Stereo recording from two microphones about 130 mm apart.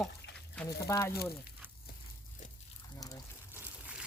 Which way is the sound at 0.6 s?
25° left (ahead or behind).